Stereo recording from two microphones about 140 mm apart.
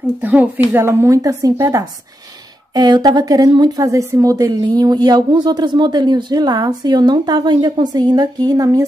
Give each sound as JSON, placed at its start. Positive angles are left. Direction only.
{"t": 0.2, "sound": "a woman's voice", "side_deg": -10}